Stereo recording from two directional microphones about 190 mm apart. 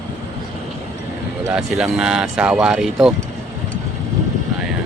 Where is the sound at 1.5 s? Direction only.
5° right (ahead or behind).